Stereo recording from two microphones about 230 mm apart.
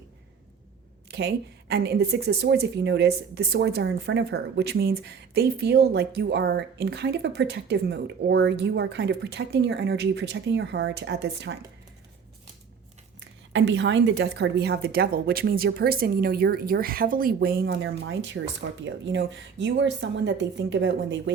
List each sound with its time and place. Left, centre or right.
1.1 s speech: right
13.1 s a woman's voice: right